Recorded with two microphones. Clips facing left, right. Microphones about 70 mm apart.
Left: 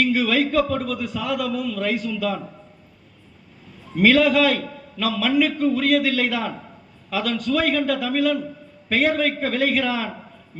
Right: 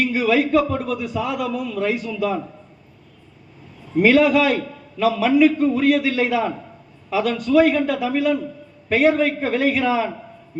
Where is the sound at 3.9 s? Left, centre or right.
Centre.